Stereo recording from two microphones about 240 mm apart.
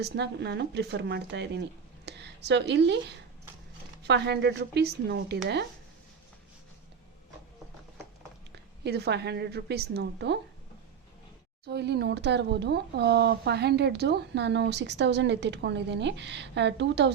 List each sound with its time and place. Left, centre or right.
0.0 s speech: right
8.5 s speech: right
11.6 s speech: right